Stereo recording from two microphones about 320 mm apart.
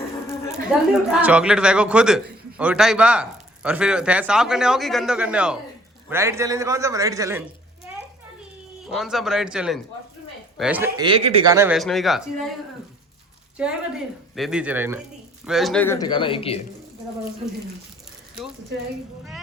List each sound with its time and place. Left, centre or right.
0.7 s a man's voice: centre
7.9 s a sound: centre
8.9 s speech: centre
13.6 s speech: centre
17.4 s speech: centre